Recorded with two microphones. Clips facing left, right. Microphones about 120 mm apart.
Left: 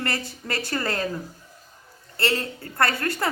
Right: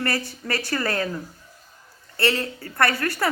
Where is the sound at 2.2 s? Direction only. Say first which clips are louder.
Right 2 dB; 30° left (ahead or behind).